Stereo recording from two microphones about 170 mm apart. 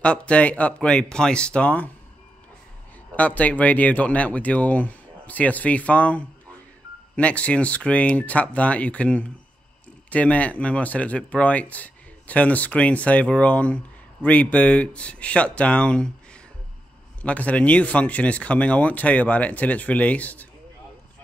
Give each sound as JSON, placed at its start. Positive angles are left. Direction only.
{"t": 0.0, "sound": "speech", "side_deg": 5}
{"t": 3.2, "sound": "speech", "side_deg": 10}